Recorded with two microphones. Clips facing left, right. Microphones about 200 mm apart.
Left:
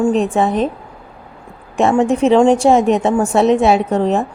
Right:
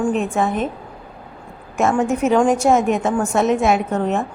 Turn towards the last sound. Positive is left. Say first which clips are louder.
# left 4 dB
turn(degrees=35)  # may be behind; listen again after turning